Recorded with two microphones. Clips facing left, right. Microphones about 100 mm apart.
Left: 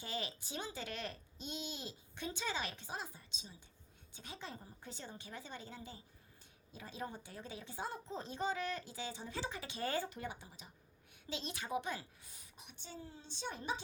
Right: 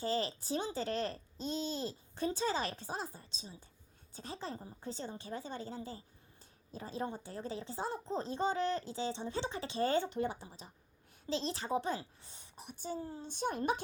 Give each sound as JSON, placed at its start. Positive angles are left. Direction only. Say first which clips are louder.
{"t": 0.0, "sound": "a woman's voice", "louder": "right 9 dB", "side_deg": -35}